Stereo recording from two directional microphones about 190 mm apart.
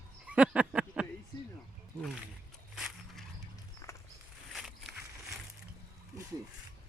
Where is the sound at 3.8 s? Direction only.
15° left (ahead or behind).